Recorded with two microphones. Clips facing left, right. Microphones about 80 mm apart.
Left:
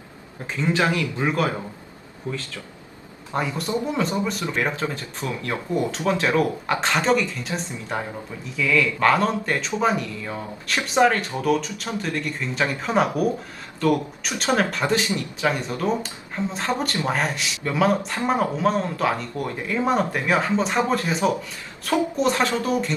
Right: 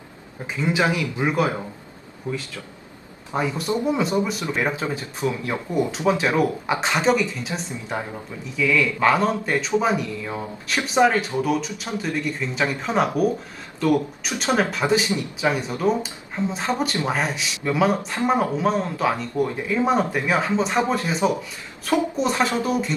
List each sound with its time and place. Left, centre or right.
0.6 s a man's voice: centre
3.3 s speech: centre
3.8 s a man's voice: centre